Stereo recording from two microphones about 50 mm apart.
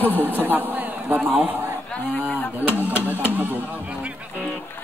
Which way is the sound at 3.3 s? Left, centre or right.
Right.